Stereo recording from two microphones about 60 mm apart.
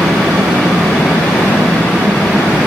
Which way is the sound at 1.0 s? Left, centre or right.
Centre.